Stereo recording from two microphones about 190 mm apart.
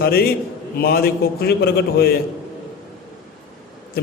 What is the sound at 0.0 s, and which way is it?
A man's voice, 55° left (ahead or behind).